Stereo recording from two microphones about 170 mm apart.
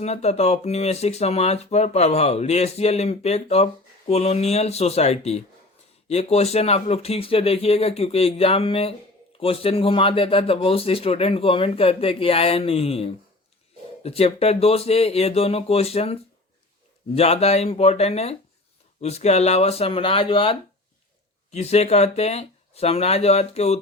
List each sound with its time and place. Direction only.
0.0 s speech: 40° left (ahead or behind)
17.2 s speech: 35° left (ahead or behind)